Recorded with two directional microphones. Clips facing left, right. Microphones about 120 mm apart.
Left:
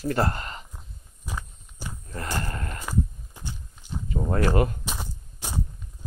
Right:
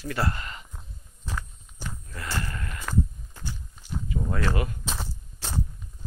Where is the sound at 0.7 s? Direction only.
10° left (ahead or behind).